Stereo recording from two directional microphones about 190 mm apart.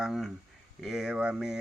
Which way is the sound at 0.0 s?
5° right (ahead or behind).